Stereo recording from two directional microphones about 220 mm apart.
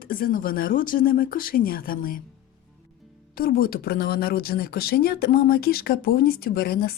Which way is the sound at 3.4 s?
40° left (ahead or behind).